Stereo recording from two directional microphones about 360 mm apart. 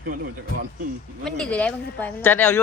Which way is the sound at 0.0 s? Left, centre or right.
Right.